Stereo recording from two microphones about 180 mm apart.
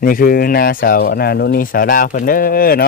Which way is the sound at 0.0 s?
50° left (ahead or behind).